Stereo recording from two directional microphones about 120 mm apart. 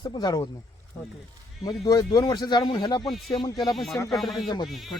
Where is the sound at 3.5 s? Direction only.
Centre (ahead or behind).